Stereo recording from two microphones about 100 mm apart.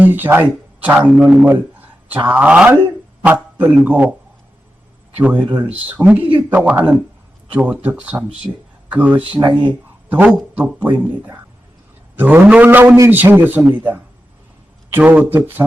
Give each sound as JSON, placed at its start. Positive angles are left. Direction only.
{"t": 0.0, "sound": "a man's voice", "side_deg": -20}
{"t": 5.2, "sound": "speech", "side_deg": -15}
{"t": 9.4, "sound": "speech", "side_deg": -50}
{"t": 10.5, "sound": "speech", "side_deg": -15}